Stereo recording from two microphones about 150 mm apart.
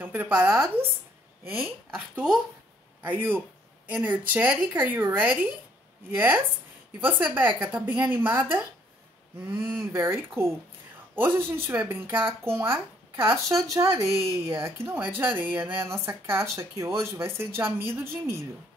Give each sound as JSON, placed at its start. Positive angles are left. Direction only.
{"t": 0.0, "sound": "speech", "side_deg": -10}
{"t": 2.0, "sound": "speech", "side_deg": -5}
{"t": 9.5, "sound": "speech", "side_deg": -15}